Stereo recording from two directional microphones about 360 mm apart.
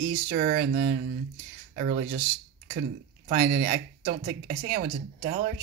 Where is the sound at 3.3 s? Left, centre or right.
Right.